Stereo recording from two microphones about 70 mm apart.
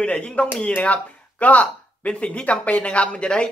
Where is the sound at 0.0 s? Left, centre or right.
Centre.